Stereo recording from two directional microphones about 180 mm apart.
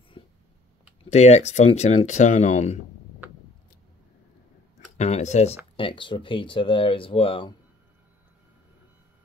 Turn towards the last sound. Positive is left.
turn(degrees=30)  # may be behind; listen again after turning